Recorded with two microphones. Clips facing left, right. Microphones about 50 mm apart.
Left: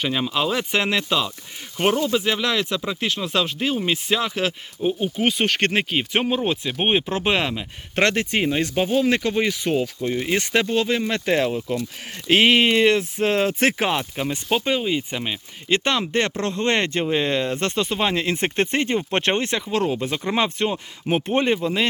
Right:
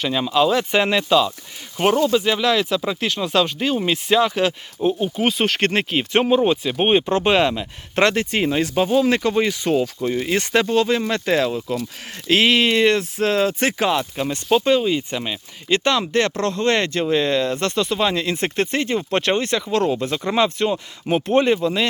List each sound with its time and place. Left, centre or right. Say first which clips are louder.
0.0 s speech: right 4 dB; centre
9.0 s speech: right 2 dB; centre
11.3 s speech: right 1 dB; left
14.0 s speech: right 2 dB; centre